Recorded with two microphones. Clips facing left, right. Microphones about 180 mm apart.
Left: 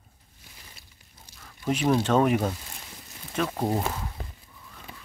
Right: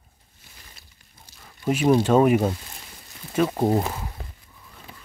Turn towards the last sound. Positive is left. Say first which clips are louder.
# right 6 dB
turn(degrees=-20)  # may be behind; listen again after turning